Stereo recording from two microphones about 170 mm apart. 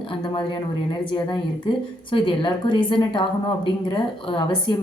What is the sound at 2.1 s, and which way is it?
A woman's voice, 30° left (ahead or behind).